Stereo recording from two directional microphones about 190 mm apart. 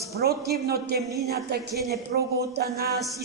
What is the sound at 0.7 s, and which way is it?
A woman's voice, 55° right (ahead or behind).